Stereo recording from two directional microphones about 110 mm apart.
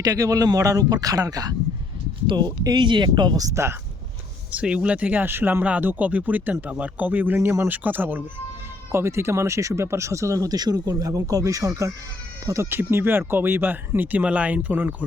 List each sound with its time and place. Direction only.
0.0 s speech: 30° right (ahead or behind)
4.5 s speech: 10° right (ahead or behind)